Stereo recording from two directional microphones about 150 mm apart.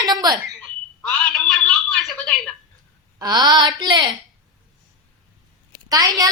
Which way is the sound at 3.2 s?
25° right (ahead or behind).